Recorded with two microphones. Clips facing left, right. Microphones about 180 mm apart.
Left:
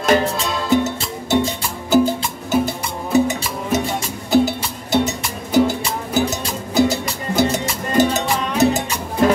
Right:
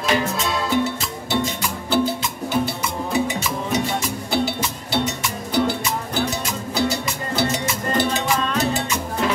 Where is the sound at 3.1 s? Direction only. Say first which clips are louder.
Left 7 dB; 45° left (ahead or behind).